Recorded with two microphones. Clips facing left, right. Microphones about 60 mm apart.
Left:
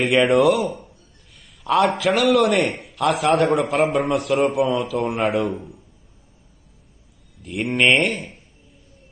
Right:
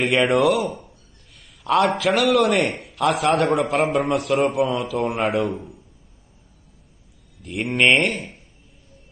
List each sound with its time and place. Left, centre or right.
0.3 s a sound: centre
2.3 s a man's voice: centre
7.4 s a man's voice: centre